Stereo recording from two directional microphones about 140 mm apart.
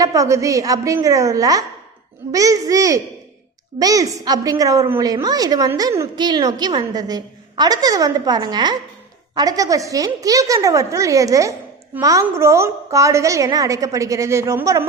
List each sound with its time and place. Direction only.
0.0 s a woman's voice: 25° right (ahead or behind)